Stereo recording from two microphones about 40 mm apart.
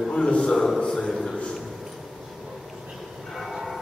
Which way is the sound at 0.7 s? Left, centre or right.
Centre.